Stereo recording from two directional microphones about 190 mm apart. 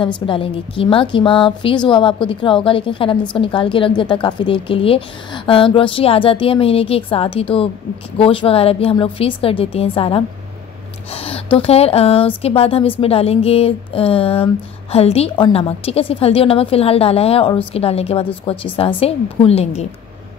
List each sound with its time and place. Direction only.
0.0 s a woman's voice: 25° left (ahead or behind)